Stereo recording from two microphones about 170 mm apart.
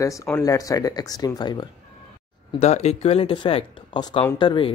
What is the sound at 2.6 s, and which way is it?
Speech, 40° left (ahead or behind).